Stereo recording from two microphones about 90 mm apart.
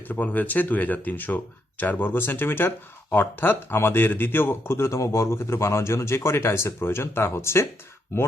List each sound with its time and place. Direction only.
0.1 s speech: 20° left (ahead or behind)